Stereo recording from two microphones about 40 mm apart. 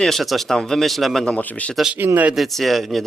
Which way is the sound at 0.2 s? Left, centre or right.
Centre.